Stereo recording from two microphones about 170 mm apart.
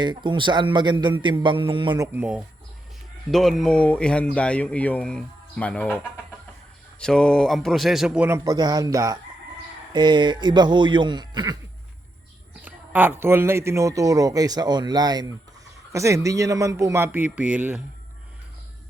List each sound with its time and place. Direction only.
0.0 s speech: 25° right (ahead or behind)
2.1 s a man's voice: 10° right (ahead or behind); by 6.0 s 5° left (ahead or behind)
7.0 s speech: 5° left (ahead or behind)
8.4 s speech: 25° right (ahead or behind)
12.6 s a man's voice: 10° right (ahead or behind)